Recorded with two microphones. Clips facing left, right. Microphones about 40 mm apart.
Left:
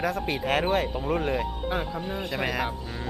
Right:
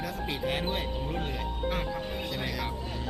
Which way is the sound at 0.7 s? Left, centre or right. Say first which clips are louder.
Left 7 dB; left.